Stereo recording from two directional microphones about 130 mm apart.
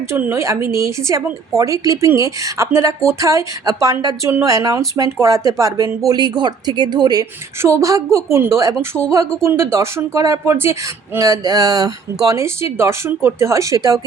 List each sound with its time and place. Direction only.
0.1 s speech: 20° right (ahead or behind)